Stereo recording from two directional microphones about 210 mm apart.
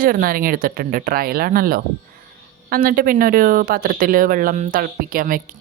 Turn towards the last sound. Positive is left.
turn(degrees=-45)  # may be behind; listen again after turning